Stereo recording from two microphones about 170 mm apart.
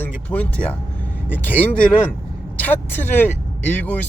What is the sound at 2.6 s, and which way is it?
Speech, 10° left (ahead or behind).